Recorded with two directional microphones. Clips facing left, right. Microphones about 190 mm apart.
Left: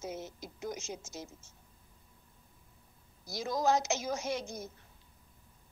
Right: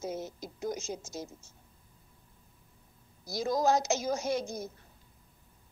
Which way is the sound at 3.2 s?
40° right (ahead or behind).